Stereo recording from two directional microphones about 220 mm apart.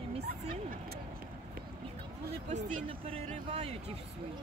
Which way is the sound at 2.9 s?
25° right (ahead or behind).